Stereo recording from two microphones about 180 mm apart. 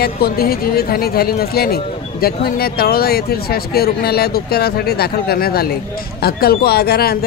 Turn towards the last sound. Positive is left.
turn(degrees=60)  # may be behind; listen again after turning